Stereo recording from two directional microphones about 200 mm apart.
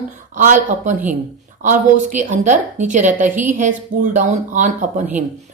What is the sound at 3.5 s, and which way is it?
Speech, 40° right (ahead or behind).